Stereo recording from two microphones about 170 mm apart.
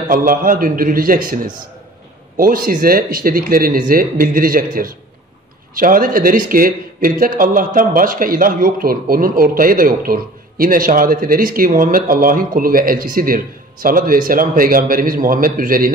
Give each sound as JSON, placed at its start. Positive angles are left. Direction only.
{"t": 0.1, "sound": "speech", "side_deg": -55}